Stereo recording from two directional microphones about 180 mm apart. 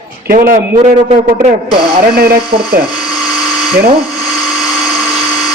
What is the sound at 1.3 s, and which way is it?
A man's voice, 50° right (ahead or behind).